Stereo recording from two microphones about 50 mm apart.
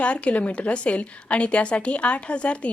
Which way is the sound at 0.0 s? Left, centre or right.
Left.